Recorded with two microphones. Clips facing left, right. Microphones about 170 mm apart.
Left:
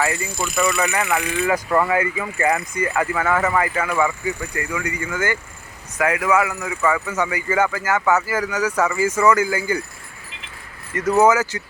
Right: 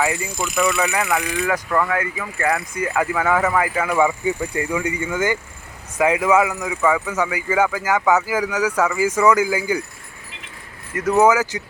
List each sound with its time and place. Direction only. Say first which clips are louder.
0.0 s speech: right 1 dB; 10° right (ahead or behind)
0.6 s speech: right 1 dB; 5° right (ahead or behind)
2.8 s speech: right 1 dB; 10° right (ahead or behind)
10.9 s speech: even; 10° right (ahead or behind)